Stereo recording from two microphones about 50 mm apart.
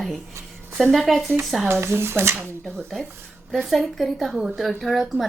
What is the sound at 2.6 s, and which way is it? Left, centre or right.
A woman's voice, centre.